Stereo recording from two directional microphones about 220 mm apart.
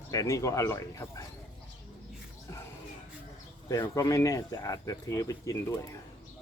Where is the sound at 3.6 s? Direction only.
15° left (ahead or behind).